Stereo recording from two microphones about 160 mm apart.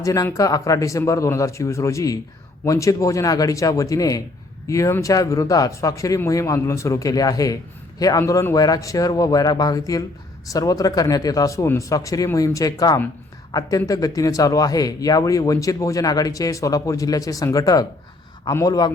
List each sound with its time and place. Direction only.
0.0 s speech: 20° left (ahead or behind)